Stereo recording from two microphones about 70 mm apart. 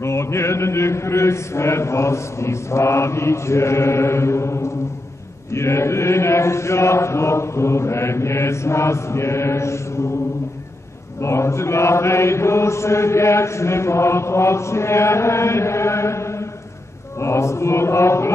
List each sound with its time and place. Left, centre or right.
0.0 s chant: left
11.1 s chant: left